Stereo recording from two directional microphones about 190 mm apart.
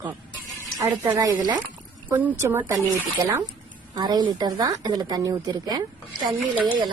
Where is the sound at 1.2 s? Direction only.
20° right (ahead or behind).